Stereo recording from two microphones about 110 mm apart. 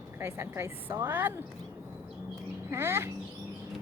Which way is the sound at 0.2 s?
20° right (ahead or behind).